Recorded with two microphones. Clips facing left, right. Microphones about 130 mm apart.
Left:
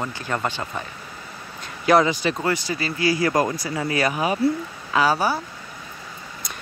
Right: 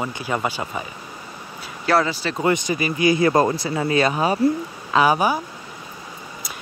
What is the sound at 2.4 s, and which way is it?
Speech, 20° right (ahead or behind).